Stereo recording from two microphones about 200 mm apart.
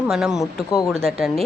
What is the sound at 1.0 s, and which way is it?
Speech, centre (ahead or behind).